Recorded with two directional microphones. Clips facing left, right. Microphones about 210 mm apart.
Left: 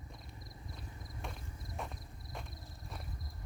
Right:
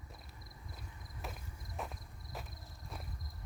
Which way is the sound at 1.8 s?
Centre (ahead or behind).